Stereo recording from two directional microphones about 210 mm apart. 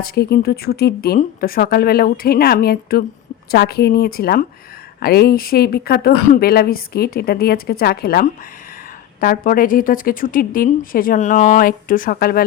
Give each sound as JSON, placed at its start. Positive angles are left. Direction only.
{"t": 0.0, "sound": "a woman's voice", "side_deg": 45}